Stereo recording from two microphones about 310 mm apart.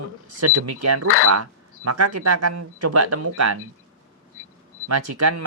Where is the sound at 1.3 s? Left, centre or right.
Right.